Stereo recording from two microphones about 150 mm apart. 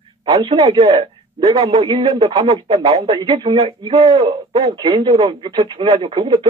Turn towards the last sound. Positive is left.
turn(degrees=-35)  # may be behind; listen again after turning